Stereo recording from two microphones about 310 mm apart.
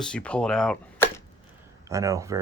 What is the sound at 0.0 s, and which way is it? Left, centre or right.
Speech, centre.